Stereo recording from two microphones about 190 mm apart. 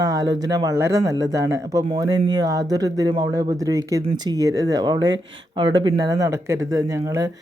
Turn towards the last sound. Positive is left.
turn(degrees=-15)  # may be behind; listen again after turning